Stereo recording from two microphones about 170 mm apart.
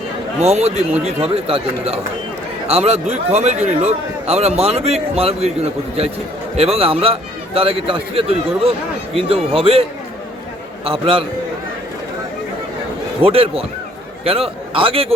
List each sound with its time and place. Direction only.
0.3 s a man's voice: 40° right (ahead or behind)
10.8 s a man's voice: 30° right (ahead or behind)
13.2 s a man's voice: 35° right (ahead or behind)